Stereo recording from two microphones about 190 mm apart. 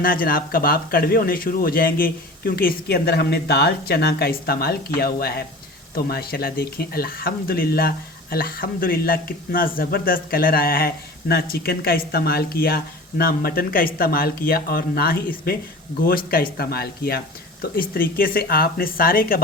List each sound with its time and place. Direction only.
0.0 s speech: 50° left (ahead or behind)